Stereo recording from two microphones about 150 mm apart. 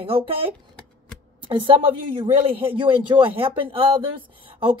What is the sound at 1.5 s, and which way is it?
Speech, 35° right (ahead or behind).